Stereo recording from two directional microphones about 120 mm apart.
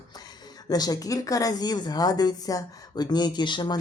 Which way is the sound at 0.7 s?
30° left (ahead or behind).